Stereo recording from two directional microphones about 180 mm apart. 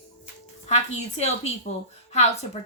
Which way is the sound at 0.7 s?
40° left (ahead or behind).